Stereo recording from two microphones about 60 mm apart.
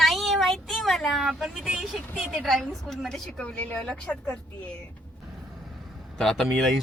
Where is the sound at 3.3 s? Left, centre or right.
Centre.